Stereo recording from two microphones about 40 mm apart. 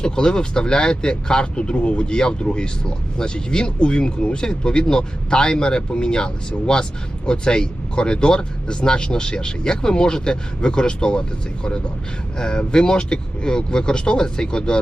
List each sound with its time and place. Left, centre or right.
0.0 s speech: centre